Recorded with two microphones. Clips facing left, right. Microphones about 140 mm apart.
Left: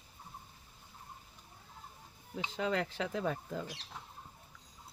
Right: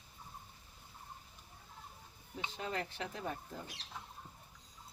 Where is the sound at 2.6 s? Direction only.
90° left.